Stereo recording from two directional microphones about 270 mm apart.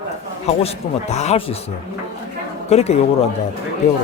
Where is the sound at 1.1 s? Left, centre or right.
Left.